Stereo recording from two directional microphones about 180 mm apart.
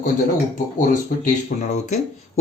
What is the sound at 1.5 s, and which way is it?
Speech, 50° left (ahead or behind).